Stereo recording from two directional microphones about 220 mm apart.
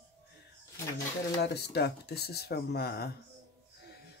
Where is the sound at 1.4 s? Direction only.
50° left (ahead or behind).